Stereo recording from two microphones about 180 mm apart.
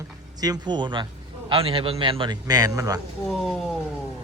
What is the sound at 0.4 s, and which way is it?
A man's voice, 25° right (ahead or behind).